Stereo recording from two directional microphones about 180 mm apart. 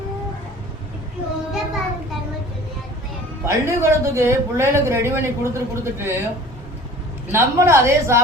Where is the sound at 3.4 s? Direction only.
15° right (ahead or behind).